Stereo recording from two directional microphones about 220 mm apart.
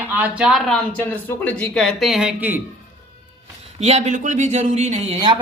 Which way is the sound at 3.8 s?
30° right (ahead or behind).